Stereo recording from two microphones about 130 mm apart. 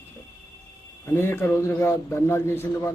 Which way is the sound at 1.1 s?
20° left (ahead or behind).